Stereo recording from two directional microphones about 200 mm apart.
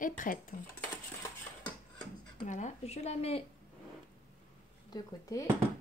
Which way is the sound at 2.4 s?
35° left (ahead or behind).